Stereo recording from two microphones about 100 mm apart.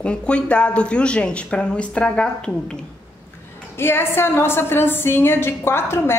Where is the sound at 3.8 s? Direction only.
25° left (ahead or behind).